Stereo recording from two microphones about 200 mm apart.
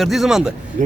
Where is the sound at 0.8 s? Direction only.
40° right (ahead or behind).